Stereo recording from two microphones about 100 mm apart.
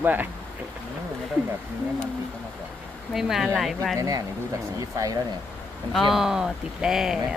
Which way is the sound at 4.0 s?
35° right (ahead or behind).